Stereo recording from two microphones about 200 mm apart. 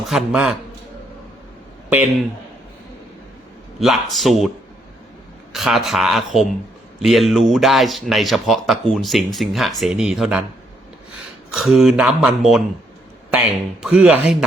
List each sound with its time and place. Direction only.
0.1 s speech: 5° right (ahead or behind)
3.8 s speech: centre (ahead or behind)
5.5 s speech: centre (ahead or behind)
11.5 s speech: centre (ahead or behind)